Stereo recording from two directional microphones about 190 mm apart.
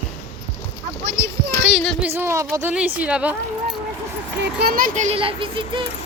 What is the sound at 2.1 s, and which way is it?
Speech, 15° right (ahead or behind).